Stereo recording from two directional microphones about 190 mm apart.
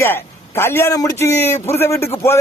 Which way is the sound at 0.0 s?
10° left (ahead or behind).